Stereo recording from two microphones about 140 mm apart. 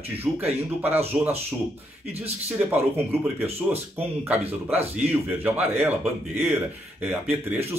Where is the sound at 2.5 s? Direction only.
15° right (ahead or behind).